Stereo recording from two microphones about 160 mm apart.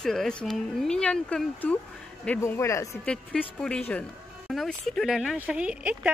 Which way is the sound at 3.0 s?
5° left (ahead or behind).